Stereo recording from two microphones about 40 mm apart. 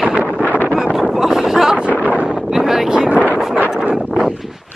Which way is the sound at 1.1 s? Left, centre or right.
Centre.